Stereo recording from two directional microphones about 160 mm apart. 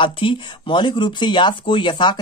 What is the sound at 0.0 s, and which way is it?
Speech, 30° left (ahead or behind).